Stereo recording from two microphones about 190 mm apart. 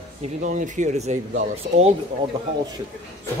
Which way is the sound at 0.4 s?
40° right (ahead or behind).